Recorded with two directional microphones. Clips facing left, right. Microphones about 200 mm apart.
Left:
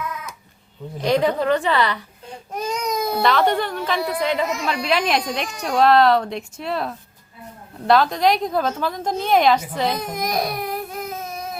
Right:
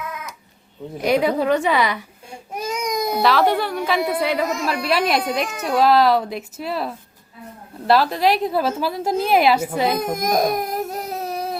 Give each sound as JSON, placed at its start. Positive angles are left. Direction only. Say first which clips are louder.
{"t": 1.0, "sound": "baby cry", "louder": "right 1 dB", "side_deg": -10}
{"t": 3.2, "sound": "a woman's voice", "louder": "right 1 dB", "side_deg": 0}
{"t": 9.8, "sound": "baby cry", "louder": "right 3 dB", "side_deg": -50}